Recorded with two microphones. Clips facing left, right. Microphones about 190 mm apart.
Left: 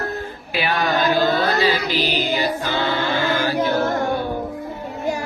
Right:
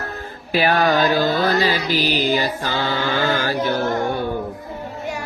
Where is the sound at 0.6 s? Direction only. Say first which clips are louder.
Right 4 dB; 40° right (ahead or behind).